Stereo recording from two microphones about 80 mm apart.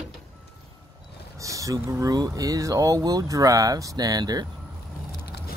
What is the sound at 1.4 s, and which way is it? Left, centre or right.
Speech, right.